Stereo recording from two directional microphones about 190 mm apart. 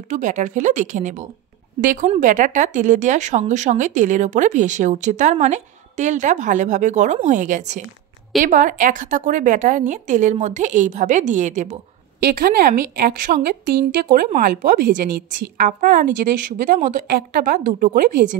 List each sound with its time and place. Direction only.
0.1 s speech: 40° right (ahead or behind)
12.2 s a woman's voice: 55° right (ahead or behind)